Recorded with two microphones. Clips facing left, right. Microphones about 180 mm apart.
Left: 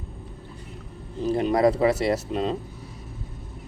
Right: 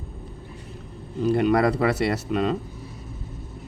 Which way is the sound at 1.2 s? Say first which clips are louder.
Right 1 dB; 65° right (ahead or behind).